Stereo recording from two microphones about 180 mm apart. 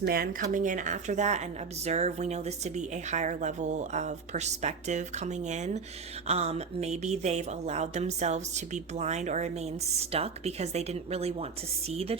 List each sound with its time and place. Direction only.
0.0 s a woman's voice: 55° right (ahead or behind); by 12.1 s 35° right (ahead or behind)